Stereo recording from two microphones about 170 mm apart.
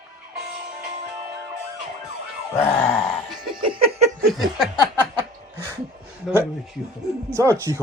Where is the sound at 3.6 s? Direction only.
30° right (ahead or behind).